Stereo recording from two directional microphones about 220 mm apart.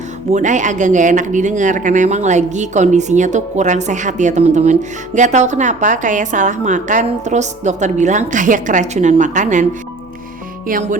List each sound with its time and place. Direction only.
0.3 s speech: 35° right (ahead or behind)
10.7 s speech: 35° right (ahead or behind)